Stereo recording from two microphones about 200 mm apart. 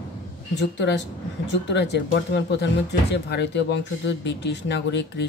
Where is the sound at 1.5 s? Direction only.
60° left (ahead or behind).